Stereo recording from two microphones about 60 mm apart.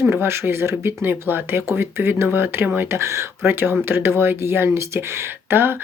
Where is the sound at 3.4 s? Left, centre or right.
Right.